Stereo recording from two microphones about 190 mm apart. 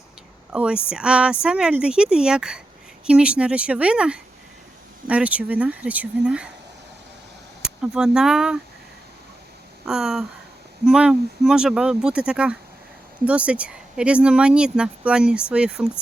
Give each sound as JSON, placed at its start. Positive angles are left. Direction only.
{"t": 0.5, "sound": "speech", "side_deg": -5}
{"t": 7.6, "sound": "speech", "side_deg": -5}
{"t": 9.8, "sound": "speech", "side_deg": 0}